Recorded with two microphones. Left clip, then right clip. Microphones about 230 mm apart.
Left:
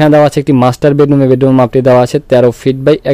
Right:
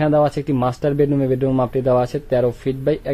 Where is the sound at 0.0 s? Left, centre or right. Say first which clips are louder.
Left 10 dB; left.